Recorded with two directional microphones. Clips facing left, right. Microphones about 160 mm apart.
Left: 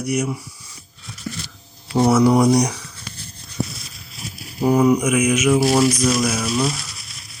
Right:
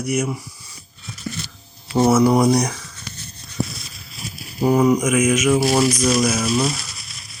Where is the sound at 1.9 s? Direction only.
5° right (ahead or behind).